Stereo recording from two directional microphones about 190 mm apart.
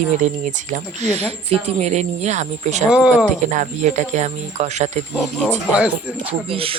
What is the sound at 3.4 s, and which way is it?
Speech, 40° right (ahead or behind).